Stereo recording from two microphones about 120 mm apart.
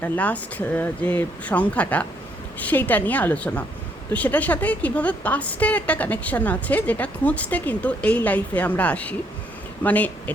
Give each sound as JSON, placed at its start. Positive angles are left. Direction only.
{"t": 0.0, "sound": "a woman's voice", "side_deg": 15}